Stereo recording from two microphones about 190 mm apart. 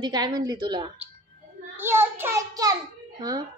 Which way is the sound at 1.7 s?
10° right (ahead or behind).